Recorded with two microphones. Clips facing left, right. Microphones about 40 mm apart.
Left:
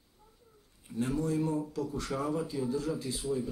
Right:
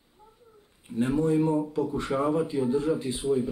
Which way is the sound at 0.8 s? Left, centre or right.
Right.